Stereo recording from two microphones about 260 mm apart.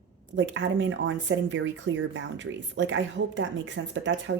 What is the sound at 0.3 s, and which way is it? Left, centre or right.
Speech, right.